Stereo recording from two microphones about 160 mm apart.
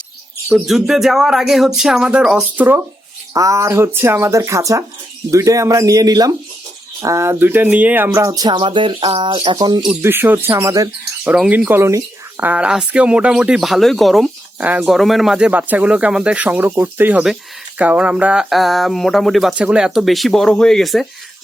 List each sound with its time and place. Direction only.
0.4 s speech: 5° right (ahead or behind); by 9.9 s 25° right (ahead or behind)
9.9 s speech: 15° right (ahead or behind)
11.3 s speech: 10° right (ahead or behind)